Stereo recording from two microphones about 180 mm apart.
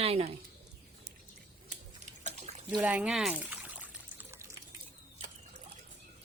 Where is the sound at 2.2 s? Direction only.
40° right (ahead or behind).